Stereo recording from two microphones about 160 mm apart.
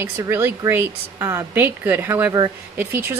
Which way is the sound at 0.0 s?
15° right (ahead or behind).